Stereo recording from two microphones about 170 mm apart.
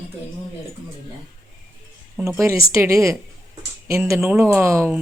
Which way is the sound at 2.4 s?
15° right (ahead or behind).